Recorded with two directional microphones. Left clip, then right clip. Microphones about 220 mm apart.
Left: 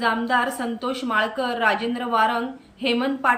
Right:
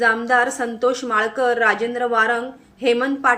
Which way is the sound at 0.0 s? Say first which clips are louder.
Right 5 dB; 5° right (ahead or behind).